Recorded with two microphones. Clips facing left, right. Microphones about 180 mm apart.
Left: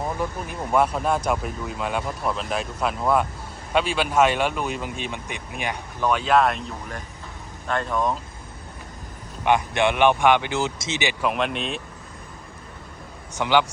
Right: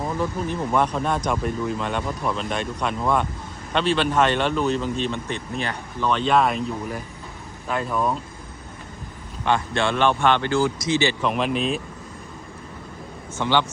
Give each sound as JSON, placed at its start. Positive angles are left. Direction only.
{"t": 0.2, "sound": "a man's voice", "side_deg": 10}
{"t": 9.4, "sound": "a man's voice", "side_deg": 15}
{"t": 11.3, "sound": "speech", "side_deg": 0}
{"t": 13.3, "sound": "a man's voice", "side_deg": 15}